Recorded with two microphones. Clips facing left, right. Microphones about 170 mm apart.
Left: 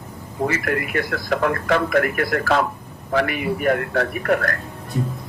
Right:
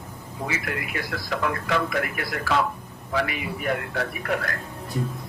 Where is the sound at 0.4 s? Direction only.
55° left (ahead or behind).